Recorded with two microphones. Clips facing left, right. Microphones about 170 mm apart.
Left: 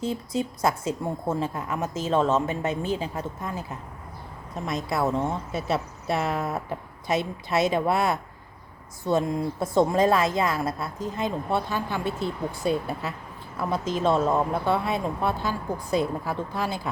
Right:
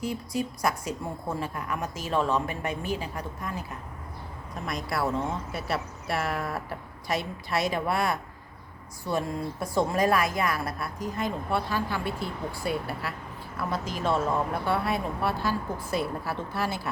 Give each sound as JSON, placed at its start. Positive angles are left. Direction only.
{"t": 0.0, "sound": "a woman's voice", "side_deg": 25}
{"t": 4.6, "sound": "a woman's voice", "side_deg": 20}